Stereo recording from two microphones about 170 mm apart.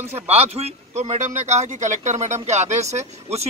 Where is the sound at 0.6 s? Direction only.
40° right (ahead or behind).